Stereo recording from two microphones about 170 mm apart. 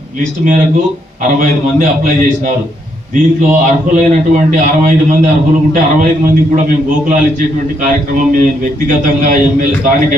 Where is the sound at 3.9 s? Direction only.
50° right (ahead or behind).